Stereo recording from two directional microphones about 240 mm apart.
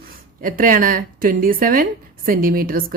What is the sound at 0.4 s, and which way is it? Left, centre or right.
Speech, right.